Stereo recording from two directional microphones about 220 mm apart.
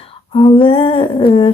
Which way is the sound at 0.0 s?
25° left (ahead or behind).